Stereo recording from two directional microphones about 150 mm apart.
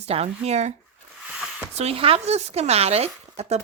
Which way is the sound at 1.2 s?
5° right (ahead or behind).